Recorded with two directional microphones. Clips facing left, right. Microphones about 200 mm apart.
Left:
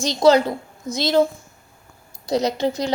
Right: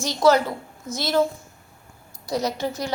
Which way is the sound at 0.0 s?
15° left (ahead or behind).